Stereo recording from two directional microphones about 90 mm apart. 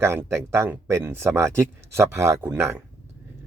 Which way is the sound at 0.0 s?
30° right (ahead or behind).